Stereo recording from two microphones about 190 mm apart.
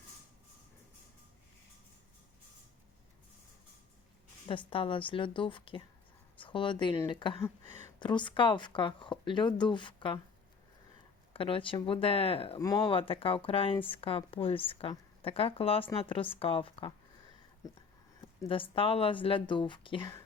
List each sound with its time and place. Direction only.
4.4 s a woman's voice: 30° left (ahead or behind)
7.4 s a sound: 10° left (ahead or behind)
7.9 s a woman's voice: 25° left (ahead or behind)
11.3 s a woman's voice: 30° left (ahead or behind)
12.5 s a woman's voice: 20° left (ahead or behind)